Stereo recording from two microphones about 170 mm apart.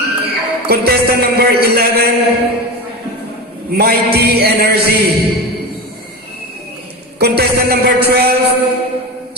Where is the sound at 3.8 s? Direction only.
70° right (ahead or behind).